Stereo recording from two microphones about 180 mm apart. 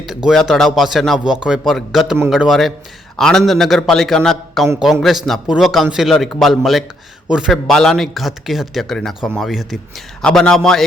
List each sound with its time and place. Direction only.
0.0 s speech: 5° right (ahead or behind)